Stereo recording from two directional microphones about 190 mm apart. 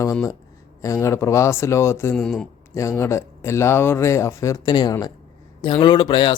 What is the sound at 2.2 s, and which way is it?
Speech, 5° left (ahead or behind).